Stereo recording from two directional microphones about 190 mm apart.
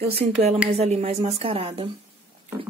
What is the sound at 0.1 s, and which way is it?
A woman's voice, 35° right (ahead or behind).